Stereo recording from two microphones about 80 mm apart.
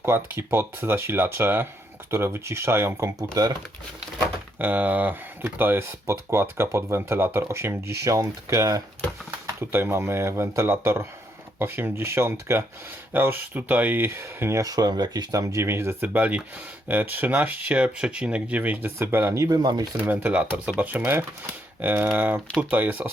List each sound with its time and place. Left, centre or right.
0.0 s speech: right
3.4 s speech: right
4.5 s speech: centre; by 8.8 s right
9.6 s speech: right
14.6 s speech: right
16.1 s speech: right
19.5 s speech: right
20.1 s speech: centre